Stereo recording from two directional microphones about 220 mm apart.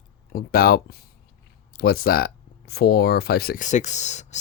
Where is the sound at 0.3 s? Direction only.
40° left (ahead or behind).